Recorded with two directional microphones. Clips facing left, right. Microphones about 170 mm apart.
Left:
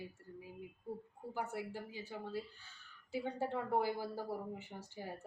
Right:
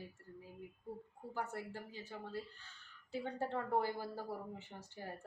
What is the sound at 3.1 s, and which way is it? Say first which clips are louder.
A woman's voice: left 1 dB; 10° left (ahead or behind).